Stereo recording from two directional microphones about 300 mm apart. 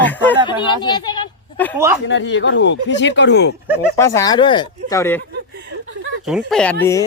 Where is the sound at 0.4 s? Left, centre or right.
Centre.